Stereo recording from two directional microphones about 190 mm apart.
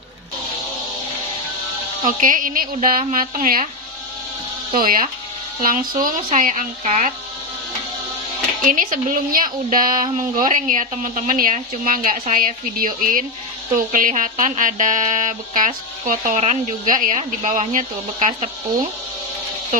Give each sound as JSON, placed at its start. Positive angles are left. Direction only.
{"t": 2.0, "sound": "speech", "side_deg": -45}
{"t": 4.7, "sound": "a woman's voice", "side_deg": -50}
{"t": 8.6, "sound": "speech", "side_deg": -45}